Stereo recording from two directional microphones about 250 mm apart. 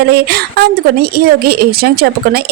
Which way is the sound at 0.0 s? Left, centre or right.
Right.